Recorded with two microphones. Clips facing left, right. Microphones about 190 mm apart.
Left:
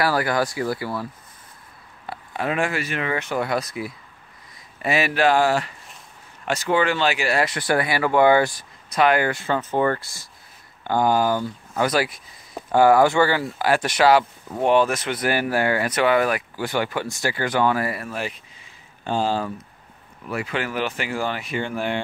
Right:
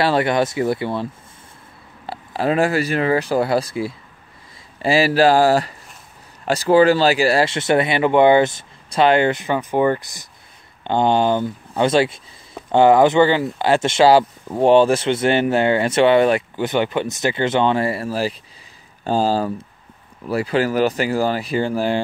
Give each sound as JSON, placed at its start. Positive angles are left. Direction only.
{"t": 0.0, "sound": "speech", "side_deg": -25}
{"t": 2.0, "sound": "speech", "side_deg": -30}